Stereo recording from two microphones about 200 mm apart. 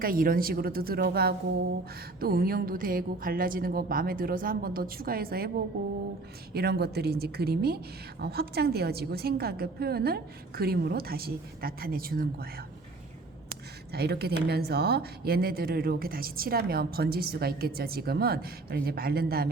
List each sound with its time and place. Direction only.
0.0 s speech: 45° right (ahead or behind)
6.5 s speech: 55° right (ahead or behind)
13.5 s a sound: 55° right (ahead or behind)
14.4 s speech: 50° right (ahead or behind)